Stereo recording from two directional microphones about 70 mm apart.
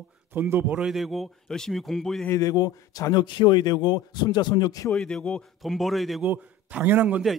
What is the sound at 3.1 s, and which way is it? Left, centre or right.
A man's voice, left.